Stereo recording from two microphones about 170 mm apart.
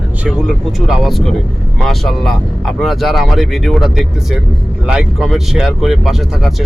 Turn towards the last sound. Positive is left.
turn(degrees=0)  # may be behind; listen again after turning